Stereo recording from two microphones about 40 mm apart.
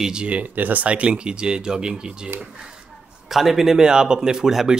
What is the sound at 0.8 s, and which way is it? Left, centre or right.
Speech, right.